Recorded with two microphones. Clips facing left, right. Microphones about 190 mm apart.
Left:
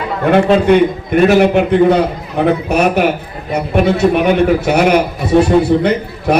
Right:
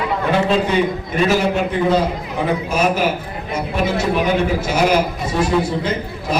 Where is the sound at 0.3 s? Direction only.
60° left (ahead or behind).